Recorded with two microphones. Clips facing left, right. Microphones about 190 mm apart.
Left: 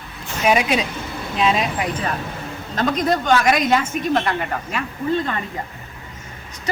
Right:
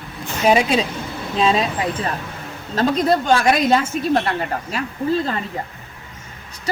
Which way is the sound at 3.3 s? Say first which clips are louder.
Left 1 dB; 30° right (ahead or behind).